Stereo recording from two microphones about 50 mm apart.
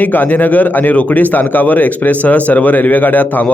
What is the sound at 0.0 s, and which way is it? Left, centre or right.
A man's voice, left.